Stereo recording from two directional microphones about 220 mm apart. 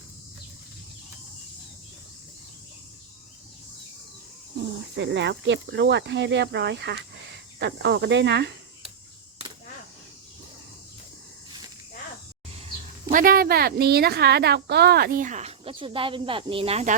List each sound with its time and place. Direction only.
4.9 s speech: 55° right (ahead or behind)
13.1 s a woman's voice: 40° right (ahead or behind)